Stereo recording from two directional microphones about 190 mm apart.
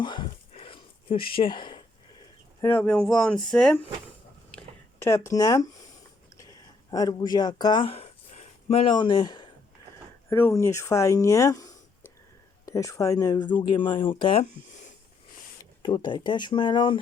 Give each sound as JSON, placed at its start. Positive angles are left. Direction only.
{"t": 0.0, "sound": "a sound", "side_deg": 25}
{"t": 2.6, "sound": "speech", "side_deg": 10}
{"t": 4.5, "sound": "a sound", "side_deg": 15}
{"t": 6.9, "sound": "speech", "side_deg": 20}
{"t": 10.2, "sound": "speech", "side_deg": 15}
{"t": 12.6, "sound": "speech", "side_deg": 15}
{"t": 15.8, "sound": "speech", "side_deg": 25}